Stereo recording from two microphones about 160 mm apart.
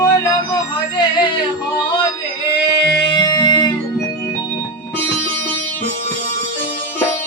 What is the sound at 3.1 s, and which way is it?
Music, 25° left (ahead or behind).